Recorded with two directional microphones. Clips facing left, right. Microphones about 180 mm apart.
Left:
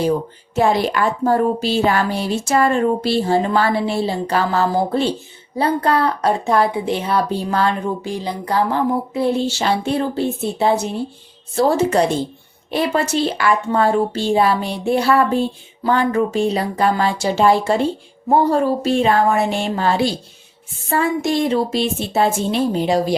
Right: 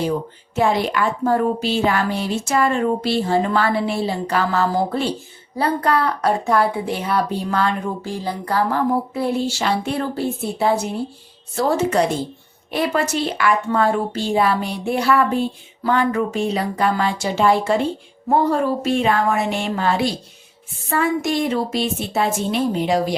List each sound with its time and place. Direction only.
0.5 s speech: 35° left (ahead or behind)
8.0 s speech: 20° left (ahead or behind)